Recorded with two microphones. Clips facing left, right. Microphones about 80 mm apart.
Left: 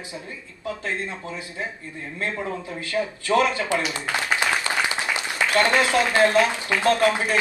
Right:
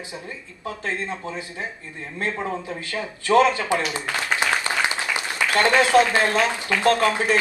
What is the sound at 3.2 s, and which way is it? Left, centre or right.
Speech, right.